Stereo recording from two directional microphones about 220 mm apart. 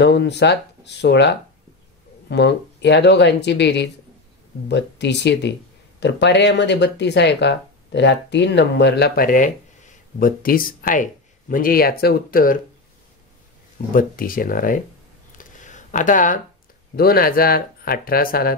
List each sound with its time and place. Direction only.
0.0 s speech: 50° left (ahead or behind)
13.9 s speech: 40° left (ahead or behind)
15.3 s a sound: 35° left (ahead or behind)
16.9 s speech: 40° left (ahead or behind)